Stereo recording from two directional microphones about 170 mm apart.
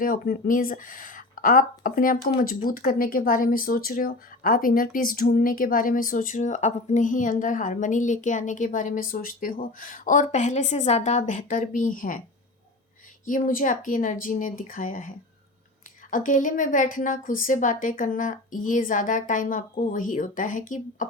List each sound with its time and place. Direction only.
0.0 s speech: 55° left (ahead or behind)
13.2 s speech: 50° left (ahead or behind)